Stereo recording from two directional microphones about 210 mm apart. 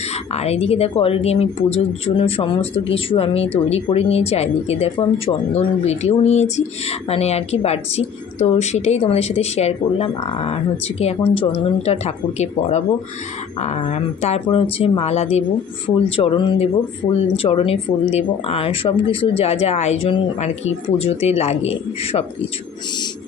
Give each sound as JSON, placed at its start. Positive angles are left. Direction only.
{"t": 0.3, "sound": "speech", "side_deg": 30}